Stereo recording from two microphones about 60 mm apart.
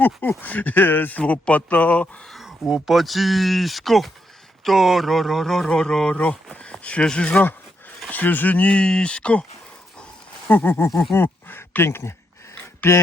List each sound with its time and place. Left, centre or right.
0.4 s speech: left
2.6 s speech: centre
6.1 s speech: left
8.1 s speech: left
8.7 s speech: centre
10.5 s speech: left
12.5 s a sound: left